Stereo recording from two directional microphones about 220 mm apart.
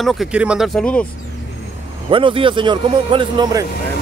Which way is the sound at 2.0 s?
25° right (ahead or behind).